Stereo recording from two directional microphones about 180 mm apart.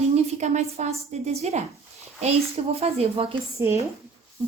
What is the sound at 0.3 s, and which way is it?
A woman's voice, 40° right (ahead or behind).